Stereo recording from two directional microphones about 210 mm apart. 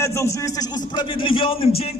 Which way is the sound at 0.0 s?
15° left (ahead or behind).